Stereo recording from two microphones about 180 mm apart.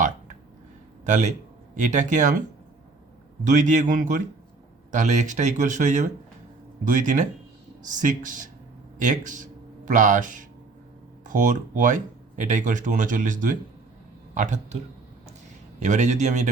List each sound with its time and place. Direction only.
1.0 s a man's voice: 40° right (ahead or behind)
3.4 s speech: 45° right (ahead or behind)
15.8 s a man's voice: 40° right (ahead or behind)